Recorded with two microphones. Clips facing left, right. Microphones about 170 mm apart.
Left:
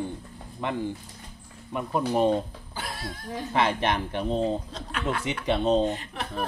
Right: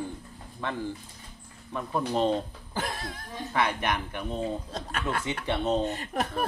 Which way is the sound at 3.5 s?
25° left (ahead or behind).